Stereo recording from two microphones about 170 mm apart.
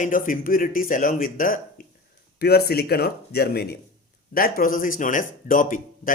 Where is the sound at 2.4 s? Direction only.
65° left (ahead or behind).